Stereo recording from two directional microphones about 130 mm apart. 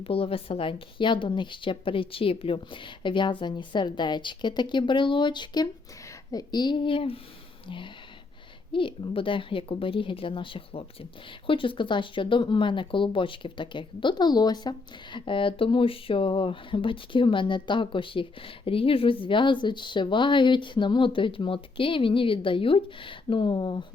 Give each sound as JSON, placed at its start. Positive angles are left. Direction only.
{"t": 0.0, "sound": "speech", "side_deg": 45}
{"t": 8.7, "sound": "speech", "side_deg": 40}